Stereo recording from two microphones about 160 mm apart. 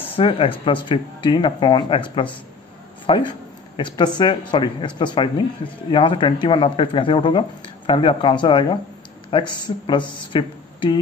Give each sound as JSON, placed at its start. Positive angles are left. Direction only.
{"t": 0.1, "sound": "a man's voice", "side_deg": 35}